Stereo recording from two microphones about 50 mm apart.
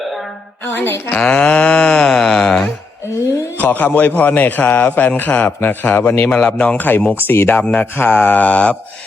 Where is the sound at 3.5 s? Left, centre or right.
Left.